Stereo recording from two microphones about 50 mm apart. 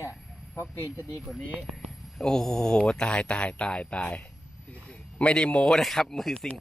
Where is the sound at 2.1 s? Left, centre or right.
Centre; by 3.6 s left.